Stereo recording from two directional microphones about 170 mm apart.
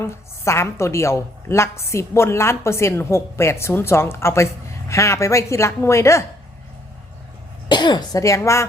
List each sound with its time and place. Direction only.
0.0 s a woman's voice: 15° left (ahead or behind)
7.7 s speech: 25° left (ahead or behind)